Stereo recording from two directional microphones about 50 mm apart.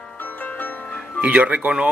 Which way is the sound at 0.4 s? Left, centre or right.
Left.